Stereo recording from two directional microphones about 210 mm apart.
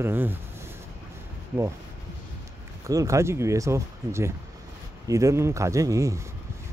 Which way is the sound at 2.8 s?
15° right (ahead or behind).